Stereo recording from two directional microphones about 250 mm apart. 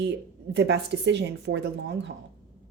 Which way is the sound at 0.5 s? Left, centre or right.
Right.